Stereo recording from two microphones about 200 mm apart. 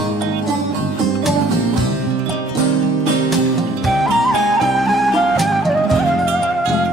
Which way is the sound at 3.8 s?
Centre (ahead or behind).